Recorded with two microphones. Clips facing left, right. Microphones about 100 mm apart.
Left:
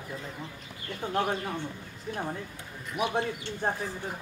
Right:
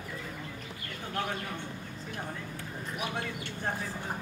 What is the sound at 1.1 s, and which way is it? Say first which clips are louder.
Speech: left 6 dB; 30° left (ahead or behind).